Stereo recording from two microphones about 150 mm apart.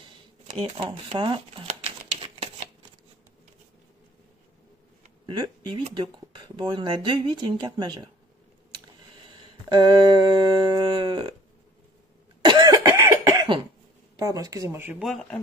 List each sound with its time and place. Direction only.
0.8 s speech: 35° right (ahead or behind)
1.8 s typewriter: 40° right (ahead or behind)
5.2 s speech: 30° right (ahead or behind)
9.7 s speech: 30° right (ahead or behind)
12.4 s cough: 30° right (ahead or behind)
14.1 s speech: 25° right (ahead or behind)
15.0 s speech: centre (ahead or behind)